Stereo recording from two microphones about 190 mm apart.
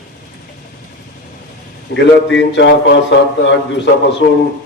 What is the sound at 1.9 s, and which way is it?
A man's voice, 70° left (ahead or behind).